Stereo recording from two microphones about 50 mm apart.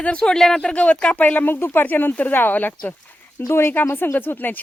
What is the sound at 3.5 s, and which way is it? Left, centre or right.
Speech, left.